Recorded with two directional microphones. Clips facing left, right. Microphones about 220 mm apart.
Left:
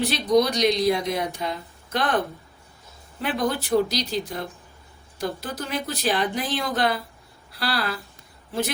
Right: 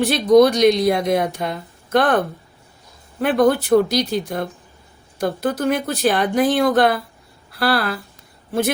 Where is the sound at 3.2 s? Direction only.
55° right (ahead or behind).